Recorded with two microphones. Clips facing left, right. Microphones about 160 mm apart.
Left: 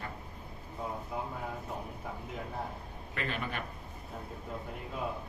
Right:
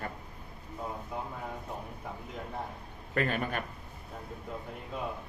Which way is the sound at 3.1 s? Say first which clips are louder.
Right 6 dB; 50° right (ahead or behind).